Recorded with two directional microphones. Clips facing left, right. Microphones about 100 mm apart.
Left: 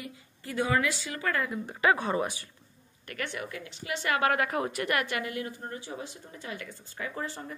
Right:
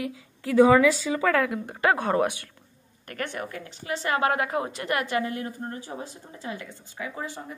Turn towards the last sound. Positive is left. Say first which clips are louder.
# right 2 dB
turn(degrees=-10)  # may be behind; listen again after turning